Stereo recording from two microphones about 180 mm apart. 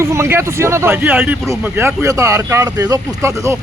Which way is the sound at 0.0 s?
15° right (ahead or behind).